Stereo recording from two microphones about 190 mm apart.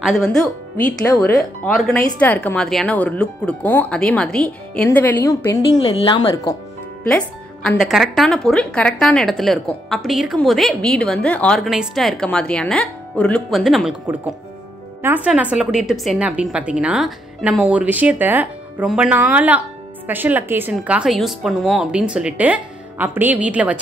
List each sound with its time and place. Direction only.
0.0 s speech: centre (ahead or behind)
1.0 s speech: 15° left (ahead or behind)
7.1 s a woman's voice: 5° left (ahead or behind)